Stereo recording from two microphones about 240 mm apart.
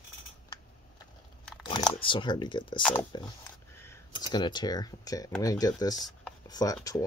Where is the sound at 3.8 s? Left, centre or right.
Centre.